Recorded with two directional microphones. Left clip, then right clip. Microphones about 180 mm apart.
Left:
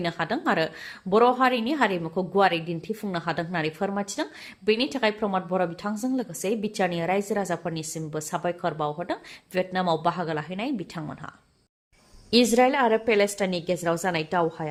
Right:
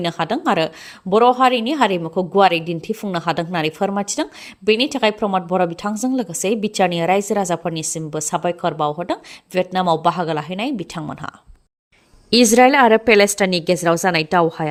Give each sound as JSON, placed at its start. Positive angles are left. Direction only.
{"t": 0.0, "sound": "a woman's voice", "side_deg": -35}